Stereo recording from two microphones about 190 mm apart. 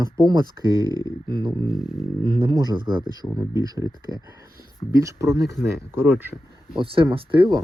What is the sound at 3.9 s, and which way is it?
Speech, 20° left (ahead or behind).